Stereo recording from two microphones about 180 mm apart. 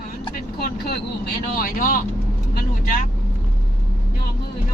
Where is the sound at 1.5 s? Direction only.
50° left (ahead or behind).